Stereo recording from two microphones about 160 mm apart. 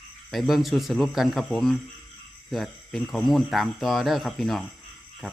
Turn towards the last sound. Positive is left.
turn(degrees=0)  # may be behind; listen again after turning